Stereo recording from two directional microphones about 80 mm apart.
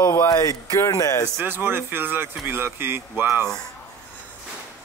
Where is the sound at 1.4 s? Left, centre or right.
Right.